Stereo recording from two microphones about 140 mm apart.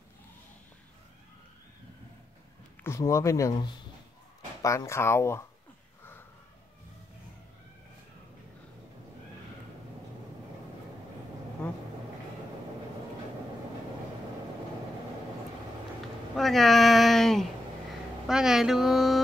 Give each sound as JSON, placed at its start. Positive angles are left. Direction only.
{"t": 2.8, "sound": "speech", "side_deg": 20}
{"t": 16.3, "sound": "a sound", "side_deg": 0}
{"t": 18.2, "sound": "speech", "side_deg": -5}